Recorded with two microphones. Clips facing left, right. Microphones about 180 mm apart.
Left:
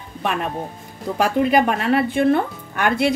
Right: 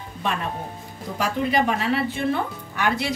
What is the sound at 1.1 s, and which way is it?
Speech, 55° left (ahead or behind).